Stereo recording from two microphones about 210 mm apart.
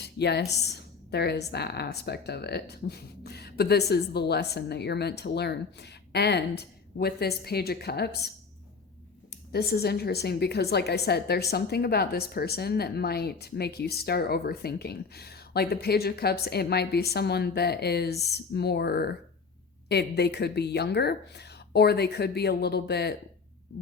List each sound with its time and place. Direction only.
0.0 s a woman's voice: 50° left (ahead or behind)
9.5 s a woman's voice: 50° left (ahead or behind)
23.7 s hum: 50° left (ahead or behind)